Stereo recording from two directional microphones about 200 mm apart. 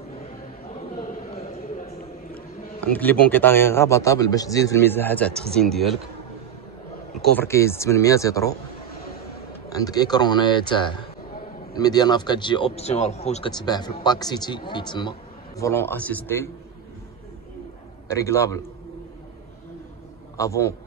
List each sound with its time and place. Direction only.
2.8 s a man's voice: 10° left (ahead or behind)
7.2 s a man's voice: 10° left (ahead or behind)
9.7 s speech: 20° left (ahead or behind)
18.1 s a man's voice: 15° left (ahead or behind)
20.3 s a man's voice: 15° left (ahead or behind)